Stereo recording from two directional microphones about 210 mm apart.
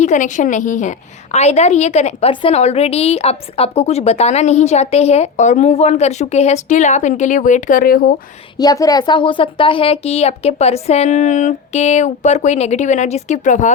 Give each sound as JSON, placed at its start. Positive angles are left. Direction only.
{"t": 0.0, "sound": "a woman's voice", "side_deg": 35}
{"t": 8.5, "sound": "a woman's voice", "side_deg": 15}